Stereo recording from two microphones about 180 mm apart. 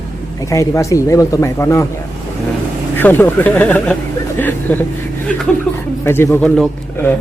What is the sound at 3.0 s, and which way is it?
Speech, 10° left (ahead or behind).